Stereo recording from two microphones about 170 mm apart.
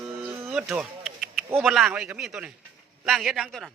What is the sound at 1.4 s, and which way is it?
Speech, 15° right (ahead or behind).